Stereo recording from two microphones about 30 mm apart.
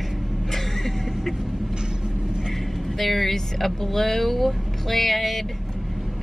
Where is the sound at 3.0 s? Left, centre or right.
Centre.